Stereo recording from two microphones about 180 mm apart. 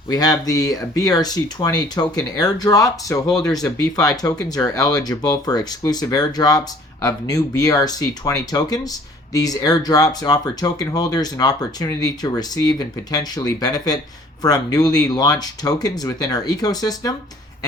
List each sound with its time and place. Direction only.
0.1 s speech: 20° left (ahead or behind)